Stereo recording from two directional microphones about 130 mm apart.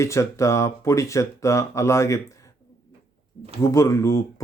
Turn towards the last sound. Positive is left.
turn(degrees=25)  # may be behind; listen again after turning